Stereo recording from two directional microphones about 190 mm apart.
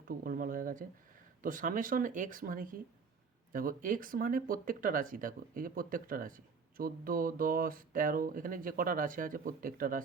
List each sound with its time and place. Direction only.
0.1 s speech: 50° right (ahead or behind)